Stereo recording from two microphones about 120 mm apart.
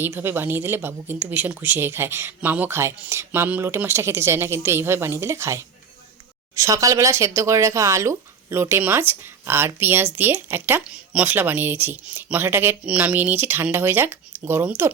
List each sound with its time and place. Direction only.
0.0 s speech: 20° right (ahead or behind)